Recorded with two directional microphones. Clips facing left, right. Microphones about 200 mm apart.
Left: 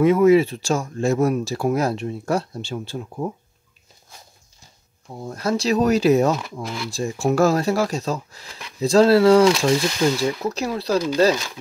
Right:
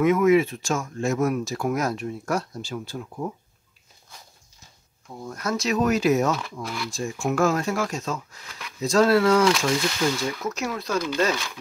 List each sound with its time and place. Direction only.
0.0 s speech: 30° left (ahead or behind)
5.2 s speech: 30° left (ahead or behind)